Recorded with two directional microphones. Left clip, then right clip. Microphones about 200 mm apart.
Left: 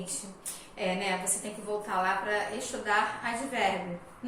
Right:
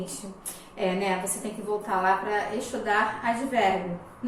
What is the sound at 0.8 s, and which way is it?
A woman's voice, centre (ahead or behind).